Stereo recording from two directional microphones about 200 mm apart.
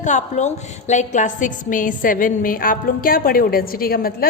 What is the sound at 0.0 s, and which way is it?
A woman's voice, 35° left (ahead or behind).